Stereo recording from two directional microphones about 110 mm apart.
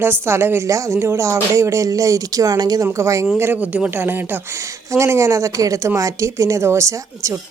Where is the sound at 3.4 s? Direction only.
15° right (ahead or behind).